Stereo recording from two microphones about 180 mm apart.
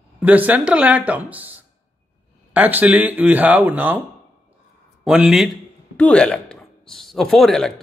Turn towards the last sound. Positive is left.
turn(degrees=0)  # may be behind; listen again after turning